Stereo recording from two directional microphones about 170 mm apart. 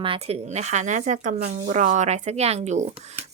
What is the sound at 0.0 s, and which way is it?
A woman's voice, 35° right (ahead or behind).